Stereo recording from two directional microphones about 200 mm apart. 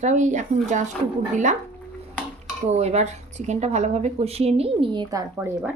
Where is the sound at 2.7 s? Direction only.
35° right (ahead or behind).